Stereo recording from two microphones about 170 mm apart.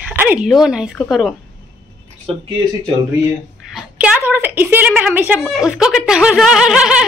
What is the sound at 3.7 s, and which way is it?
A child's voice, 10° right (ahead or behind).